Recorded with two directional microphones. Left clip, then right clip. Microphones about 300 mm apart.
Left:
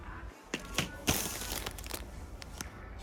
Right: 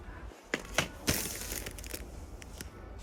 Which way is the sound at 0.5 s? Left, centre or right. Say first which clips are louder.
Right 3 dB; centre.